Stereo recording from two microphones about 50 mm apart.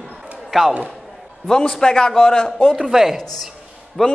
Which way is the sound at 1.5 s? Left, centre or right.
Centre.